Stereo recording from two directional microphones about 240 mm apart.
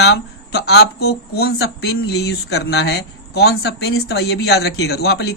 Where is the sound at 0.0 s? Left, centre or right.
Left.